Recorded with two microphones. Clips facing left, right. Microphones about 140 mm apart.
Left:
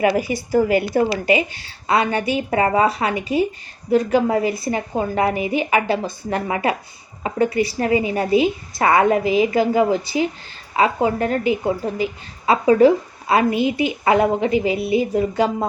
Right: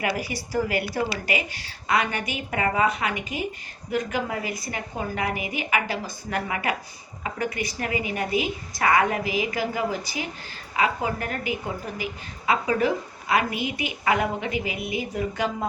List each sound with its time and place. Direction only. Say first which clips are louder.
0.0 s a woman's voice: left 9 dB; 25° left (ahead or behind)